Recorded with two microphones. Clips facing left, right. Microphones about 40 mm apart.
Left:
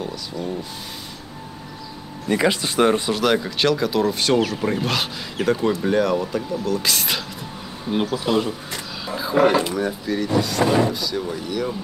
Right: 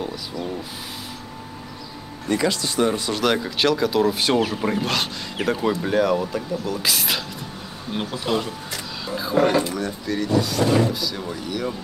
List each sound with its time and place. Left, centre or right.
0.0 s speech: centre
2.2 s speech: left
3.1 s speech: centre
8.6 s a sound: centre
9.7 s speech: centre
10.6 s speech: left
10.9 s speech: centre